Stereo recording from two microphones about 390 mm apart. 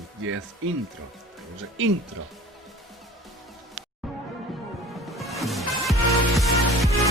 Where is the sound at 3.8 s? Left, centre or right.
Right.